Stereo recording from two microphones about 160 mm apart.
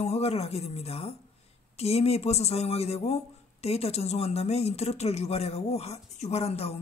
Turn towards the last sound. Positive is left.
turn(degrees=40)  # may be behind; listen again after turning